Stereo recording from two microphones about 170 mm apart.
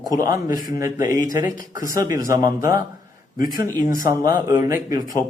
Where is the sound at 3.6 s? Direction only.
20° right (ahead or behind).